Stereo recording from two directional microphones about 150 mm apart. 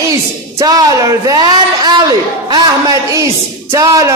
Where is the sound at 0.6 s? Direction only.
25° right (ahead or behind).